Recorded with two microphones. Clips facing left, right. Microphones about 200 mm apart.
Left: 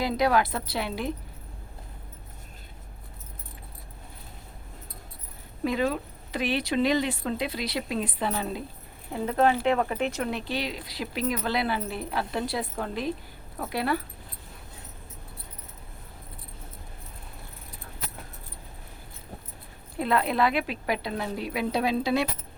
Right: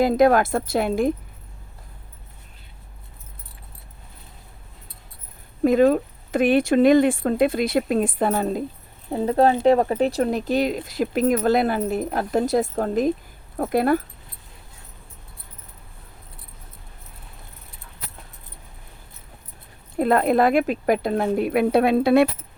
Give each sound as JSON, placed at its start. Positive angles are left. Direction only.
{"t": 0.0, "sound": "speech", "side_deg": -50}
{"t": 5.6, "sound": "speech", "side_deg": -50}
{"t": 9.0, "sound": "speech", "side_deg": -35}
{"t": 20.0, "sound": "speech", "side_deg": -50}